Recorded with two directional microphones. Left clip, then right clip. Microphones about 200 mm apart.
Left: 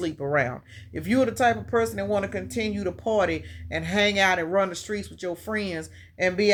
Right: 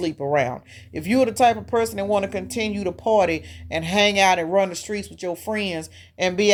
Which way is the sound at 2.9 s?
25° right (ahead or behind).